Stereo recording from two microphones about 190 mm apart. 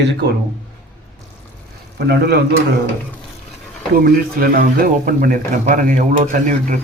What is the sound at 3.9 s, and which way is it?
Speech, 50° right (ahead or behind).